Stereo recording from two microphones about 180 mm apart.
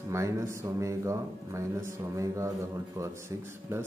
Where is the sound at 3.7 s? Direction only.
15° right (ahead or behind).